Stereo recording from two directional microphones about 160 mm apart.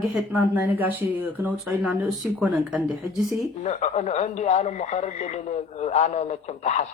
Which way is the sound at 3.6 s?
45° left (ahead or behind).